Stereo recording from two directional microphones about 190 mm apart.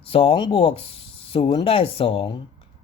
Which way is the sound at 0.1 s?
30° left (ahead or behind).